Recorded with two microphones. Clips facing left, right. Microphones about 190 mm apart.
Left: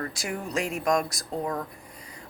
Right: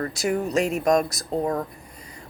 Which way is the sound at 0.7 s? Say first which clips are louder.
Right 3 dB; 40° right (ahead or behind).